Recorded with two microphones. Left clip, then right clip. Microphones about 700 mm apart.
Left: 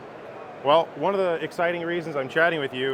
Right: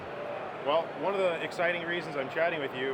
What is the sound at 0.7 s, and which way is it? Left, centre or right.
Speech, left.